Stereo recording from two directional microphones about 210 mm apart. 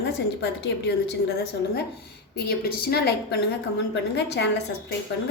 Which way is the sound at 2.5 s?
50° left (ahead or behind).